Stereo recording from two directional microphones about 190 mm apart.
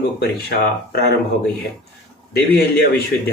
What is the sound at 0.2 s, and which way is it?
Speech, 60° left (ahead or behind).